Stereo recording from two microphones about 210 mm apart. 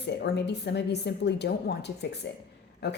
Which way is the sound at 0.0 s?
55° left (ahead or behind).